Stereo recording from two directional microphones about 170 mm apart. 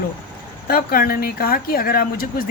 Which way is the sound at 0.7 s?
60° left (ahead or behind).